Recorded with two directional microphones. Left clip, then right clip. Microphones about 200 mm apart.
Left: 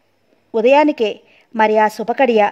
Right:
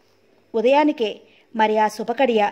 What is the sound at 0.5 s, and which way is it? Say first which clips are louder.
A woman's voice: left 5 dB; 25° left (ahead or behind).